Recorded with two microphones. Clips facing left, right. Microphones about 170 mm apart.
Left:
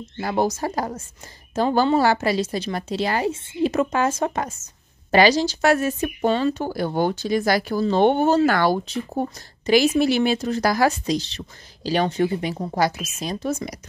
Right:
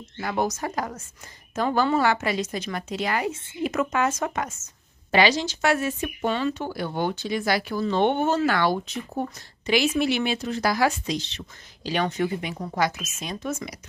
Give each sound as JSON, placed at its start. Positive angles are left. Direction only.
{"t": 0.2, "sound": "speech", "side_deg": 30}